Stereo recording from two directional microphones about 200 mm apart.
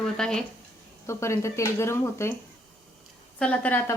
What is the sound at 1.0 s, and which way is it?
A woman's voice, 15° left (ahead or behind).